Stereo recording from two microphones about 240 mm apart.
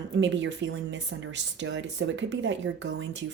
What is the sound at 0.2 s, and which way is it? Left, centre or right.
Speech, right.